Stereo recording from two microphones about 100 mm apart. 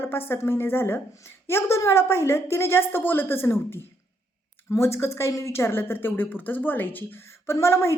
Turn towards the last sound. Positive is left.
turn(degrees=25)  # may be behind; listen again after turning